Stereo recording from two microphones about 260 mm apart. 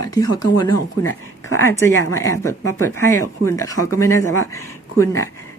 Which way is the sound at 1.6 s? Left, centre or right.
Centre.